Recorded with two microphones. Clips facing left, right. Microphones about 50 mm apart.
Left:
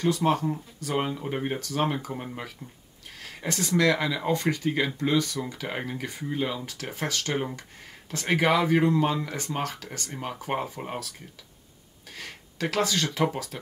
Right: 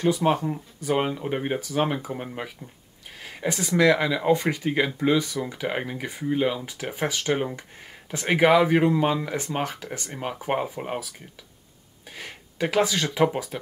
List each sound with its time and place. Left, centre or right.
0.0 s speech: centre